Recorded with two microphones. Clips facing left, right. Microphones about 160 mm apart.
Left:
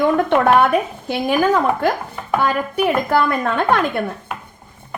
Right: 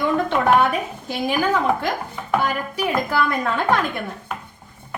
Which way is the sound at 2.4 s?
60° left (ahead or behind).